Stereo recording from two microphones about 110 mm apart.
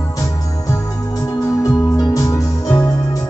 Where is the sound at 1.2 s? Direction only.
35° left (ahead or behind).